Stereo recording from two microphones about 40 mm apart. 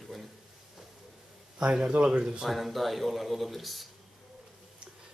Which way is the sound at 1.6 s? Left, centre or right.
Right.